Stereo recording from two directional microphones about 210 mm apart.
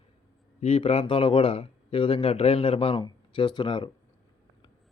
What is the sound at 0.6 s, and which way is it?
A man's voice, 30° left (ahead or behind).